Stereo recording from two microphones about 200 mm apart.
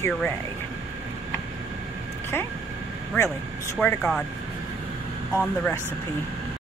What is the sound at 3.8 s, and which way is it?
Speech, 5° left (ahead or behind).